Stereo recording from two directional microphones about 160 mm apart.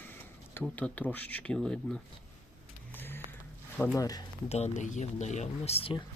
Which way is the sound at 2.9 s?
10° left (ahead or behind).